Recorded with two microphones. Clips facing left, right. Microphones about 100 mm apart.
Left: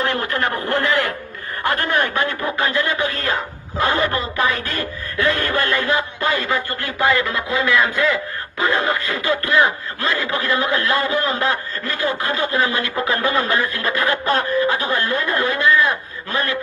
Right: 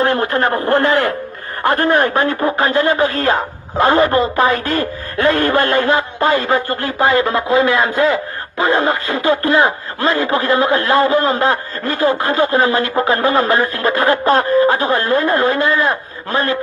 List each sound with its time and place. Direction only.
0.0 s speech: 35° right (ahead or behind)